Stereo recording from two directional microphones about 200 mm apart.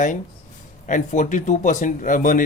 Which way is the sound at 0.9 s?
40° left (ahead or behind).